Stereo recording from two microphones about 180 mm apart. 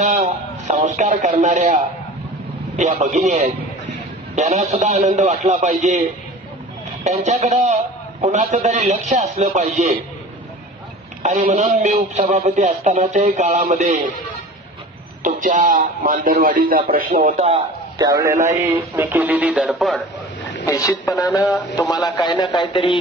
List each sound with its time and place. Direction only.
0.2 s a man's voice: 40° right (ahead or behind)
11.2 s a man's voice: 40° right (ahead or behind)
15.2 s a man's voice: 45° right (ahead or behind)
17.4 s a man's voice: 35° right (ahead or behind)
17.9 s a man's voice: 20° right (ahead or behind)
20.6 s speech: 20° left (ahead or behind)